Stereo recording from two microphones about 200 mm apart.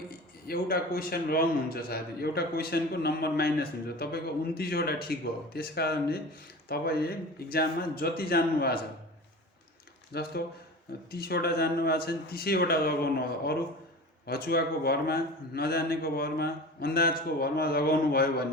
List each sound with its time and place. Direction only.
0.1 s a man's voice: 50° left (ahead or behind)
10.1 s a man's voice: 50° left (ahead or behind)